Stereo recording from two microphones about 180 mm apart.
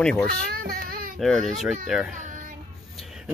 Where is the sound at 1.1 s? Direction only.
Centre (ahead or behind).